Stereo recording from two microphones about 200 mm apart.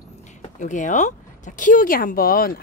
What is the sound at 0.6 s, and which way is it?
Speech, 40° left (ahead or behind).